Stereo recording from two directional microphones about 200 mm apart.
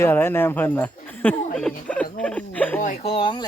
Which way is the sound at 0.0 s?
10° left (ahead or behind).